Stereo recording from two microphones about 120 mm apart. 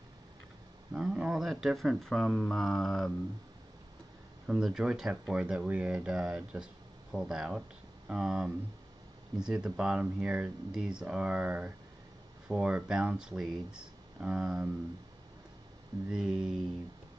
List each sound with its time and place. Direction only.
0.9 s speech: 10° right (ahead or behind)
4.5 s speech: 5° right (ahead or behind)
16.1 s speech: 5° right (ahead or behind)